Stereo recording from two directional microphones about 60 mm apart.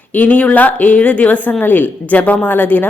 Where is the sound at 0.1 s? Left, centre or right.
Left.